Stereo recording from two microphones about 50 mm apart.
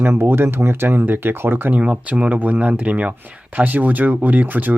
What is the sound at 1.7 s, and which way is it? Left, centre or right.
Speech, right.